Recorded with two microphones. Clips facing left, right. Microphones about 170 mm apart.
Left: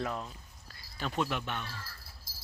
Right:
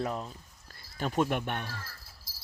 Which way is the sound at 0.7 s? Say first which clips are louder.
Right 4 dB; 45° right (ahead or behind).